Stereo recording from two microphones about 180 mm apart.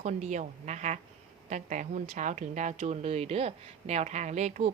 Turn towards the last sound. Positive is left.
turn(degrees=-40)  # may be behind; listen again after turning